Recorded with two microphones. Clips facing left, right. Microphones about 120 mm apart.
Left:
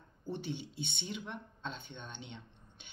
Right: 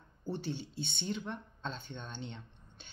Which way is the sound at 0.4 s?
15° left (ahead or behind).